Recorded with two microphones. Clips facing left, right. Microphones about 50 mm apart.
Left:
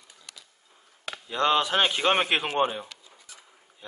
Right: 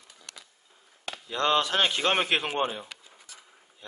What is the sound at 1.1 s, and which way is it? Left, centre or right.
A man's voice, centre.